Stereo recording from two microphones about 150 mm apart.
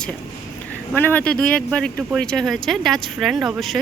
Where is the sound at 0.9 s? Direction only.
10° left (ahead or behind).